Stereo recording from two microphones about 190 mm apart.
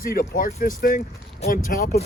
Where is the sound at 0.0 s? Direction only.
50° left (ahead or behind).